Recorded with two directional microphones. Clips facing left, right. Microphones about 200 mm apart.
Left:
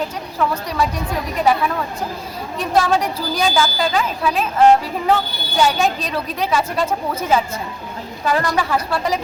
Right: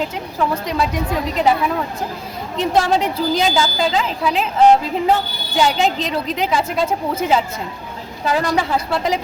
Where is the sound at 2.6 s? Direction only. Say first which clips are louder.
Right 1 dB; 20° right (ahead or behind).